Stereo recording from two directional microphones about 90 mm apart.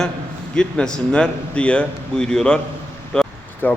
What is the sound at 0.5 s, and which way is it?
Speech, 10° left (ahead or behind).